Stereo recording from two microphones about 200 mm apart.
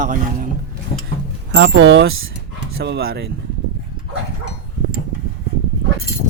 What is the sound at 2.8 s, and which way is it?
Speech, 55° right (ahead or behind).